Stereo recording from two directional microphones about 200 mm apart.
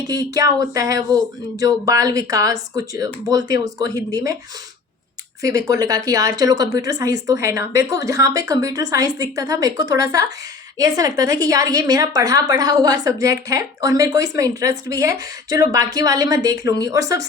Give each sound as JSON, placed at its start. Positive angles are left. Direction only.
{"t": 0.1, "sound": "a woman's voice", "side_deg": -20}
{"t": 5.4, "sound": "a woman's voice", "side_deg": -15}